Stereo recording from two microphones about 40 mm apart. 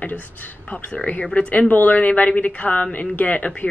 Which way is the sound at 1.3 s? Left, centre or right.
Left.